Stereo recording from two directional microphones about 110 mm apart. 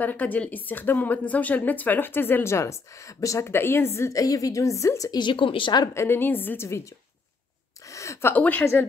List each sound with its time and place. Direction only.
0.0 s a woman's voice: 15° left (ahead or behind); by 5.2 s 30° left (ahead or behind)
5.2 s speech: 50° left (ahead or behind)
5.9 s a woman's voice: 20° left (ahead or behind)